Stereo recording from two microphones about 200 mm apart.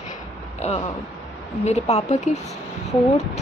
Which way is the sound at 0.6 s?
30° left (ahead or behind).